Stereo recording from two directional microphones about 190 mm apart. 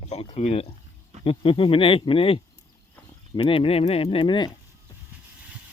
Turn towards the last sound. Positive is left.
turn(degrees=25)  # may be behind; listen again after turning